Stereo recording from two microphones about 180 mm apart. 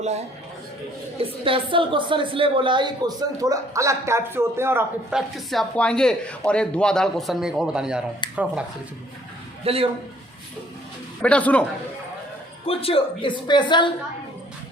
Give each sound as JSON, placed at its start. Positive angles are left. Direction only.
{"t": 1.2, "sound": "a woman's voice", "side_deg": -30}
{"t": 5.5, "sound": "speech", "side_deg": 5}
{"t": 8.2, "sound": "speech", "side_deg": 25}
{"t": 9.6, "sound": "a man's voice", "side_deg": -30}
{"t": 11.2, "sound": "a man's voice", "side_deg": 5}
{"t": 12.6, "sound": "a woman's voice", "side_deg": 30}